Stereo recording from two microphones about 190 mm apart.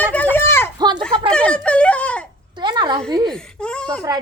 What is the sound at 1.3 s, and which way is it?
Wail, 5° left (ahead or behind).